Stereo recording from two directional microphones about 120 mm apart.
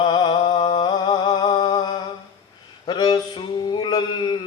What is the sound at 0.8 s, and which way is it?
Humming, 40° left (ahead or behind).